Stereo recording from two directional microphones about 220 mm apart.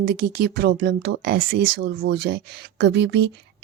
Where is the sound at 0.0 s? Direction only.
45° right (ahead or behind).